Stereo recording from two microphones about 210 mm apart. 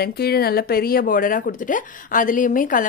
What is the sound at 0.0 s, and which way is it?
Speech, 45° left (ahead or behind).